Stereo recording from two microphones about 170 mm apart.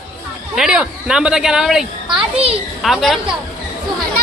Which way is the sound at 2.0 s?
30° right (ahead or behind).